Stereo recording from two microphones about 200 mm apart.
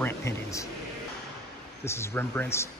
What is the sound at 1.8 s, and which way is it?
Speech, 15° left (ahead or behind).